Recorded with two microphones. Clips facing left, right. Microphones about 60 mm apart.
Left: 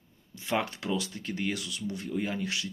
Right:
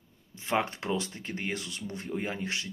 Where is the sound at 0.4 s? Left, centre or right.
Right.